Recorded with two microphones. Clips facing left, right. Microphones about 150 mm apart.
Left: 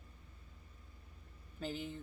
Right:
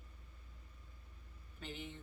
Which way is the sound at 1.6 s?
35° left (ahead or behind).